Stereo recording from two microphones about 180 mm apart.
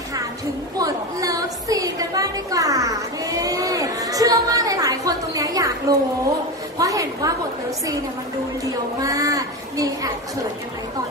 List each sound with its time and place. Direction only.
0.7 s a sound: 20° right (ahead or behind)
6.8 s a woman's voice: 20° right (ahead or behind)
8.6 s a woman's voice: 20° right (ahead or behind)